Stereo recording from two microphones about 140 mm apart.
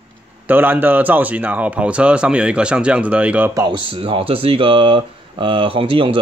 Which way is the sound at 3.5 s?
30° right (ahead or behind).